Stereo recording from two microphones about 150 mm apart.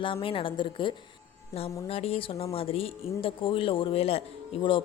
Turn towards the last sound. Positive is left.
turn(degrees=35)  # may be behind; listen again after turning